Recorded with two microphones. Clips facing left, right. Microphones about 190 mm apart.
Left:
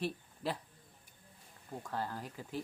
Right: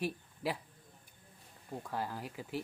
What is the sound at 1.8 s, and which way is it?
Speech, 10° right (ahead or behind).